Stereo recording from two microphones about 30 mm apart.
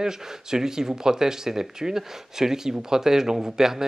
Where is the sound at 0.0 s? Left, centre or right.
Centre.